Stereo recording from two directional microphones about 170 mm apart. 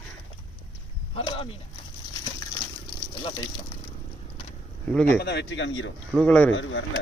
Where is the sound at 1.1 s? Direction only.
30° left (ahead or behind).